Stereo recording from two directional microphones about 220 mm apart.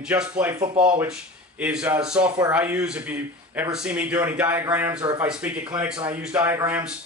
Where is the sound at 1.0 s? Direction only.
5° right (ahead or behind).